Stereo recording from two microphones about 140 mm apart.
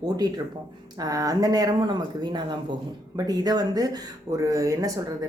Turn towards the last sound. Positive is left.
turn(degrees=-25)  # may be behind; listen again after turning